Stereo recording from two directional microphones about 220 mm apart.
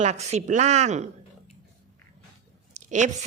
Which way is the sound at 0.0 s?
30° right (ahead or behind).